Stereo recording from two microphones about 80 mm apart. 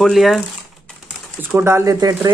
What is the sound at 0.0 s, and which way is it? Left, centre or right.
Speech, centre.